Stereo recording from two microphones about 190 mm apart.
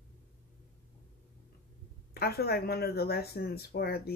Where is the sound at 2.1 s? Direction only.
55° left (ahead or behind).